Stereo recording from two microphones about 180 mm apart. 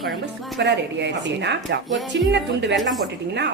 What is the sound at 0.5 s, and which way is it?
Speech, 75° right (ahead or behind).